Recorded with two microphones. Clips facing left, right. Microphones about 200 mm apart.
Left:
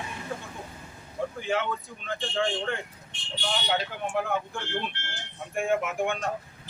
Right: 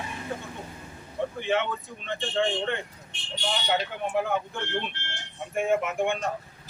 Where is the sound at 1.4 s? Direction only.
Centre (ahead or behind).